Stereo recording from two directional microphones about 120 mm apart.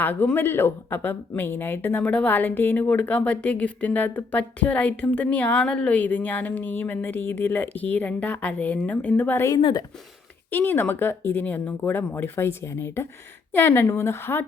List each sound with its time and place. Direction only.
0.0 s speech: 15° left (ahead or behind)
9.6 s speech: 45° left (ahead or behind)
10.5 s speech: 15° left (ahead or behind)